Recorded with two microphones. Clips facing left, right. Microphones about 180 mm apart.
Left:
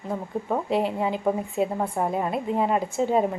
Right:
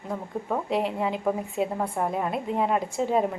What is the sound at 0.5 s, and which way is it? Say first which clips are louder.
A woman's voice: left 2 dB; centre (ahead or behind).